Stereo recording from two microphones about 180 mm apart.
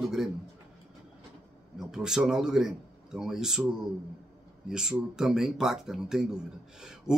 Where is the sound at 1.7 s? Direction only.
5° right (ahead or behind).